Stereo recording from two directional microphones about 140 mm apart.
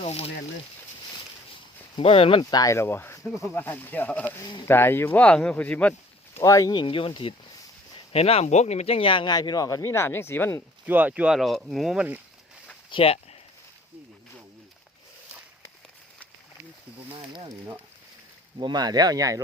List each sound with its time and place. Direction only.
0.0 s speech: 45° left (ahead or behind)
2.0 s speech: 40° left (ahead or behind)
2.4 s speech: 25° left (ahead or behind); by 5.9 s 10° left (ahead or behind)
6.4 s speech: 25° left (ahead or behind)
10.8 s speech: 10° right (ahead or behind)
12.9 s speech: 40° left (ahead or behind)
17.2 s speech: 35° right (ahead or behind)
18.6 s speech: 30° right (ahead or behind)